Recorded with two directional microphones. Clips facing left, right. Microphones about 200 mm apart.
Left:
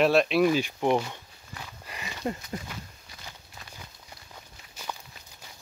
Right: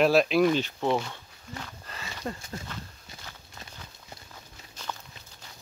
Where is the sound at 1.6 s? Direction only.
15° left (ahead or behind).